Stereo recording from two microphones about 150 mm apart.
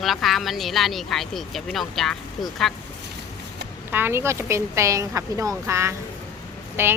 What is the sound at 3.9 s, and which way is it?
Speech, 15° right (ahead or behind).